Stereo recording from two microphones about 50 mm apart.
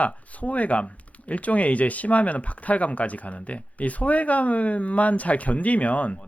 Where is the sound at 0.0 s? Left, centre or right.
Left.